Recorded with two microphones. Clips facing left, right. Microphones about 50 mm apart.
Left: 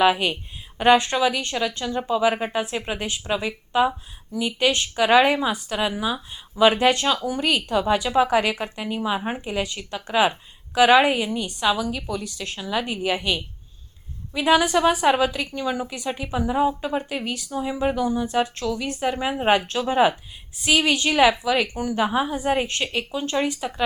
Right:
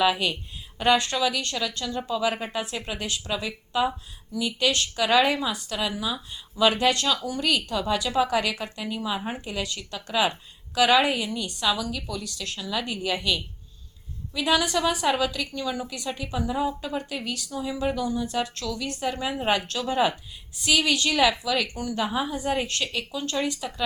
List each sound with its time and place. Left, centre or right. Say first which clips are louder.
0.0 s a woman's voice: left 4 dB; left